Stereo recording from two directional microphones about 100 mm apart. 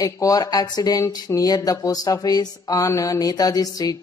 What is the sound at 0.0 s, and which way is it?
A man's voice, 40° left (ahead or behind).